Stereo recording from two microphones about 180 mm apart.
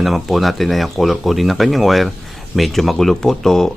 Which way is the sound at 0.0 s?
Centre (ahead or behind).